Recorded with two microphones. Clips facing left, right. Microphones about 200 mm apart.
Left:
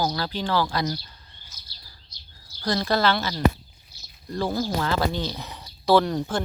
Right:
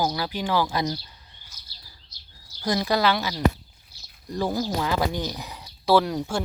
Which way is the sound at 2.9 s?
15° right (ahead or behind).